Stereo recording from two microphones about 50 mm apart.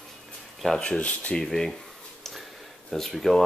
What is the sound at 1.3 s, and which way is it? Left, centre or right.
Speech, centre.